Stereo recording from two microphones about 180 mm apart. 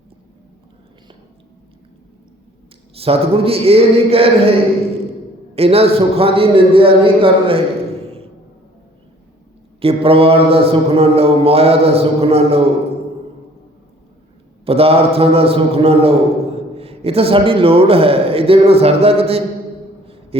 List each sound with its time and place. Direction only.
2.9 s a man's voice: 35° right (ahead or behind)
5.5 s a man's voice: 35° right (ahead or behind)
9.8 s a man's voice: 30° right (ahead or behind)
14.6 s a man's voice: 35° right (ahead or behind)